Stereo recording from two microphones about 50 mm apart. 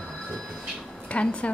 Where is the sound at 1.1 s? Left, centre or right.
Left.